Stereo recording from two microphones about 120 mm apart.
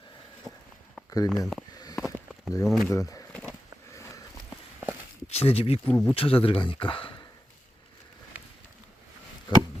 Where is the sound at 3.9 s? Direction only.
25° left (ahead or behind).